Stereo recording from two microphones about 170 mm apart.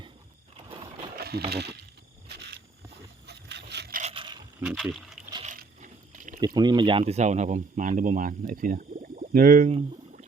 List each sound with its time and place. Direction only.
1.1 s a sound: 65° right (ahead or behind)
1.5 s speech: 75° right (ahead or behind)
2.3 s wild animals: 75° right (ahead or behind)
3.2 s boat: 85° right
4.1 s a sound: 30° right (ahead or behind)
4.6 s speech: centre (ahead or behind)
5.5 s a sound: 50° right (ahead or behind)
6.4 s speech: 25° right (ahead or behind)
7.1 s speech: 40° right (ahead or behind)